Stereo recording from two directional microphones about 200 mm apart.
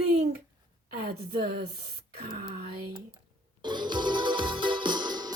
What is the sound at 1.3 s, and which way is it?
Speech, 50° right (ahead or behind).